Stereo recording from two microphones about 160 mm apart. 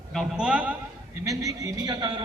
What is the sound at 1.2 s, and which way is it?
Speech, 20° right (ahead or behind).